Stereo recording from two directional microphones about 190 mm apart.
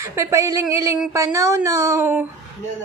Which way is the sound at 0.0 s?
15° right (ahead or behind).